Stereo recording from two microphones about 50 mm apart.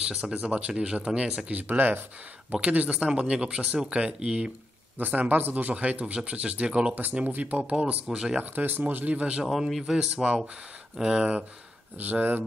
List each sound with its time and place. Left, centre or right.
0.1 s speech: centre
1.5 s speech: right
2.5 s speech: right
3.1 s speech: centre
4.9 s speech: right
7.2 s speech: right
8.1 s speech: centre
8.4 s speech: right
9.1 s speech: right
9.4 s speech: centre
10.1 s speech: right
12.0 s speech: right